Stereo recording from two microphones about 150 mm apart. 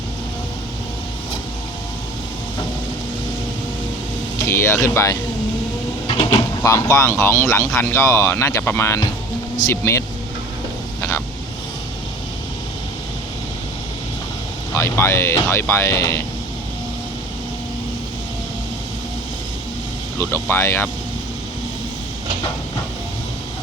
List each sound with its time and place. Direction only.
4.4 s speech: 15° left (ahead or behind)
6.1 s printer: 35° left (ahead or behind)
6.7 s speech: 20° left (ahead or behind)
14.7 s speech: 20° left (ahead or behind)
20.1 s speech: 15° left (ahead or behind)